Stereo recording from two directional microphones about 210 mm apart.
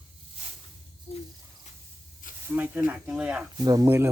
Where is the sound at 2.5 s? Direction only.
10° right (ahead or behind).